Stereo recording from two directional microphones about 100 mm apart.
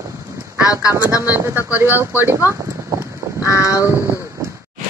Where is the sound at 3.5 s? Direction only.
35° left (ahead or behind).